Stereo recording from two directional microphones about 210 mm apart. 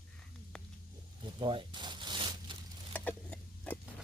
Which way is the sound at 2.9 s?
5° left (ahead or behind).